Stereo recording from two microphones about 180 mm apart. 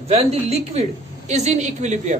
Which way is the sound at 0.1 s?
35° right (ahead or behind).